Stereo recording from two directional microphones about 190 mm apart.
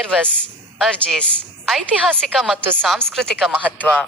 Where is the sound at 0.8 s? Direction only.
Centre (ahead or behind).